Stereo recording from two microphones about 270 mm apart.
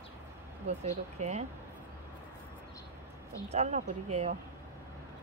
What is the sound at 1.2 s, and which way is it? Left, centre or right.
Speech, right.